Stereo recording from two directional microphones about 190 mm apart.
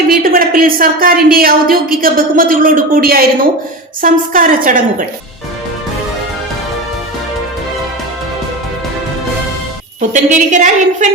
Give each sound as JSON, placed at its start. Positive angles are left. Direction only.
{"t": 0.1, "sound": "a woman's voice", "side_deg": -50}
{"t": 10.1, "sound": "a woman's voice", "side_deg": -40}